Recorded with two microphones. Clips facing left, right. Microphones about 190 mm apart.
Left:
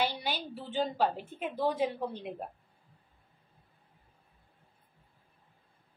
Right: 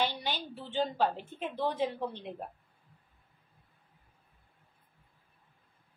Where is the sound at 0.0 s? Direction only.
10° left (ahead or behind).